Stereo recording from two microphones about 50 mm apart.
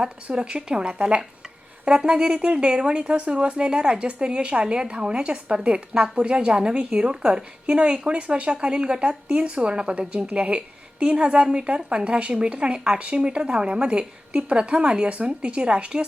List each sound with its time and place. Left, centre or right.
0.0 s speech: centre